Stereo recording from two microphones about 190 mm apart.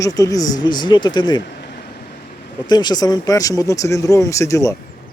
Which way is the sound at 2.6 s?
20° left (ahead or behind).